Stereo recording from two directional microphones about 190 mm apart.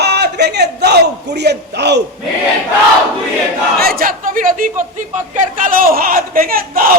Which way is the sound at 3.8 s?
50° right (ahead or behind).